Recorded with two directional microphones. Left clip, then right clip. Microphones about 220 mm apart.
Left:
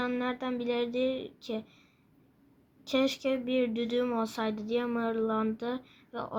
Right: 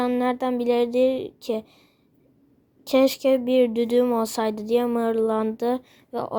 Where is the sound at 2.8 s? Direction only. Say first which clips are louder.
Right 10 dB; 45° right (ahead or behind).